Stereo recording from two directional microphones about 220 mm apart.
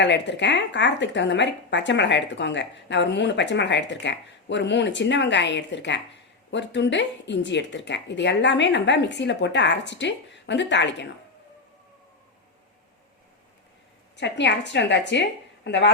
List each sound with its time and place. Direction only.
0.0 s speech: 55° left (ahead or behind)
14.2 s speech: 55° left (ahead or behind)